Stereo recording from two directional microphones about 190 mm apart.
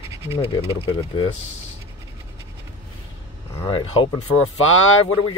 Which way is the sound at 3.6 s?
25° left (ahead or behind).